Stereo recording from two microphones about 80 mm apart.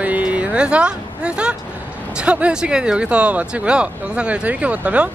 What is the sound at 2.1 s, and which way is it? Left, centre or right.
Speech, centre.